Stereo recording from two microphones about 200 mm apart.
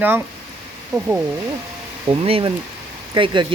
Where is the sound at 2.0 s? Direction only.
25° right (ahead or behind).